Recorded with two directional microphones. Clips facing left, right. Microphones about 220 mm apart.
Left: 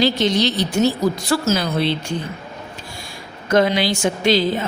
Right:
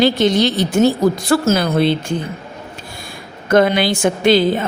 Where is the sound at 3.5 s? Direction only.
55° right (ahead or behind).